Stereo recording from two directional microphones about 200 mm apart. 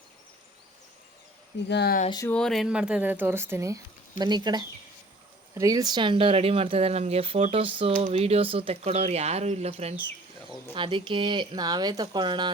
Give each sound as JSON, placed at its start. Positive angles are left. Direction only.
{"t": 1.6, "sound": "speech", "side_deg": 55}
{"t": 2.0, "sound": "speech", "side_deg": 20}
{"t": 2.3, "sound": "speech", "side_deg": 0}